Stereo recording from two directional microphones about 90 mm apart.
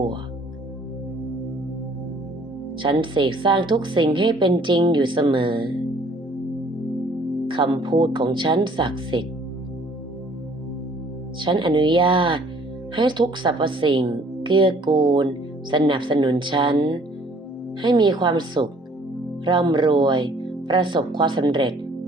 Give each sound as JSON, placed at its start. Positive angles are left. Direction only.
{"t": 2.8, "sound": "a woman's voice", "side_deg": -65}
{"t": 7.4, "sound": "a woman's voice", "side_deg": -65}
{"t": 11.3, "sound": "a woman's voice", "side_deg": -60}
{"t": 13.0, "sound": "a woman's voice", "side_deg": -60}